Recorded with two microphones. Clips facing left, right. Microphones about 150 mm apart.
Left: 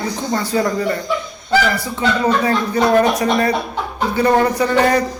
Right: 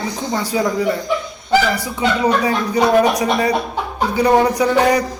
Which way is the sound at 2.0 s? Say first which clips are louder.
Even; 10° right (ahead or behind).